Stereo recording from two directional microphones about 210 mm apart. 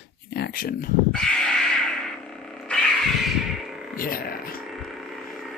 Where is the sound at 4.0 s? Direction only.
45° left (ahead or behind).